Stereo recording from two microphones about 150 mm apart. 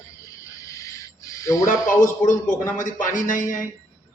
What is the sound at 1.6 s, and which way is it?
A man's voice, 60° left (ahead or behind).